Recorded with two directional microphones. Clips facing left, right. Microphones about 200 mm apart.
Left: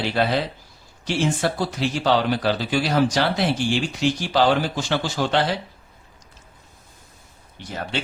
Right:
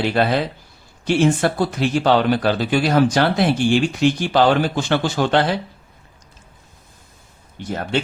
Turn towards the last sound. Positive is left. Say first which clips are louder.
# right 7 dB
turn(degrees=-50)  # may be behind; listen again after turning